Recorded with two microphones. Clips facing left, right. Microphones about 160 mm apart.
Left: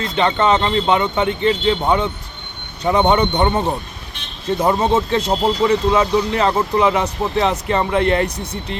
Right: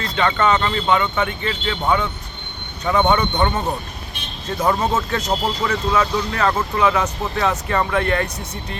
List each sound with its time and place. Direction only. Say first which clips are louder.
0.0 s speech: left 2 dB; 25° left (ahead or behind)